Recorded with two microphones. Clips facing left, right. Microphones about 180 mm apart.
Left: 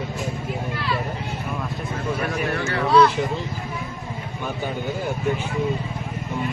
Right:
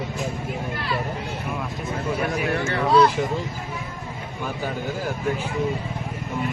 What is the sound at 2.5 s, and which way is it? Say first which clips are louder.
Speech: left 1 dB; 25° right (ahead or behind).